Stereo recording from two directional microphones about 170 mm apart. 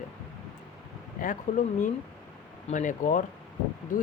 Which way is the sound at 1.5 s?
45° left (ahead or behind).